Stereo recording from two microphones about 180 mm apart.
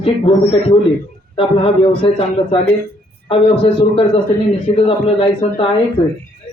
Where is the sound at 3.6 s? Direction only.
30° left (ahead or behind).